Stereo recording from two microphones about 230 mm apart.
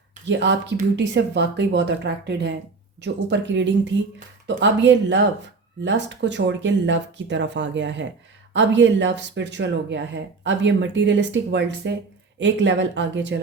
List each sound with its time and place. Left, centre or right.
0.3 s speech: right